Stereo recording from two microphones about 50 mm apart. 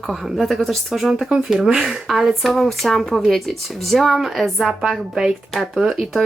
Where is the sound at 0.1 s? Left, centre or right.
Centre.